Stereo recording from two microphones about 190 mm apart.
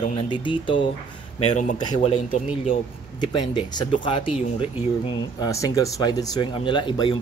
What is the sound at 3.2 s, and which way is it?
Speech, 20° left (ahead or behind).